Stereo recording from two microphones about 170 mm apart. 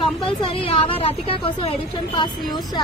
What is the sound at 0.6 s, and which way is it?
A woman's voice, 30° left (ahead or behind).